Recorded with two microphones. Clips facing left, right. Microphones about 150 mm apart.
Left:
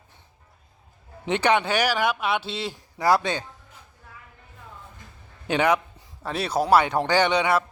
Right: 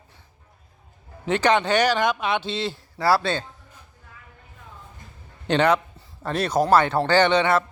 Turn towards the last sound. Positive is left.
turn(degrees=10)  # may be behind; listen again after turning